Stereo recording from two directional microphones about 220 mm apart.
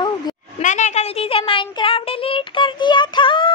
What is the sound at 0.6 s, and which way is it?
Speech, 35° left (ahead or behind).